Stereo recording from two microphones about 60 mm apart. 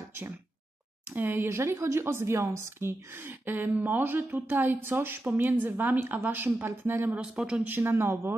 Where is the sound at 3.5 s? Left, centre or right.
Right.